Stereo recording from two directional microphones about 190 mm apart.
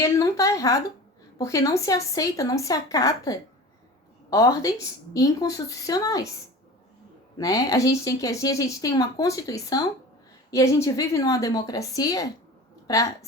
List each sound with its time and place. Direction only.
0.0 s a woman's voice: 15° left (ahead or behind)
7.3 s a woman's voice: 15° left (ahead or behind)